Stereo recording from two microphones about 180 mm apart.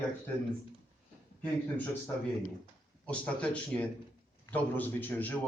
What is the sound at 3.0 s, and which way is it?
Speech, 5° left (ahead or behind).